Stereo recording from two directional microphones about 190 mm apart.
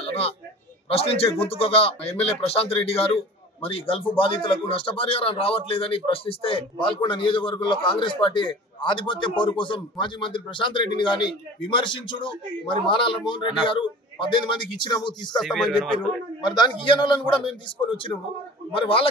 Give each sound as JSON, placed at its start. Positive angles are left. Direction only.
{"t": 0.0, "sound": "a sound", "side_deg": 30}
{"t": 0.9, "sound": "a man's voice", "side_deg": 30}
{"t": 15.3, "sound": "speech", "side_deg": 0}
{"t": 16.3, "sound": "a man's voice", "side_deg": 20}